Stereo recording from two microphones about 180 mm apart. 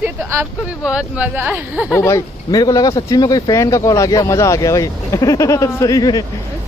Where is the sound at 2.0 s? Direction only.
15° left (ahead or behind).